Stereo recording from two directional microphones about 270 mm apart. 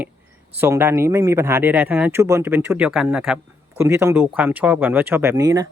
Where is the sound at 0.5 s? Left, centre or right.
Centre.